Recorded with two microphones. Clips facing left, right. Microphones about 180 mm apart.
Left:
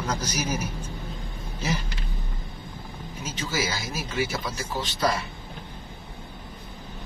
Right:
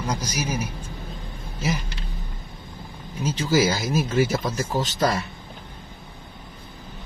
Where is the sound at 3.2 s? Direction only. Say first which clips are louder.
Right 9 dB; 40° right (ahead or behind).